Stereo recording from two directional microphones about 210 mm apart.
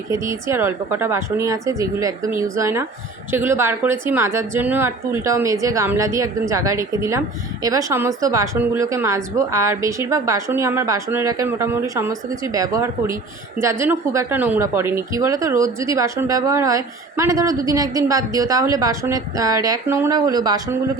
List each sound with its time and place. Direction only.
0.1 s a woman's voice: 15° right (ahead or behind)